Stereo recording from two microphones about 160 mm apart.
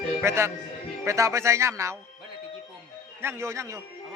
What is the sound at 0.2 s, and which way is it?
Speech, 15° right (ahead or behind).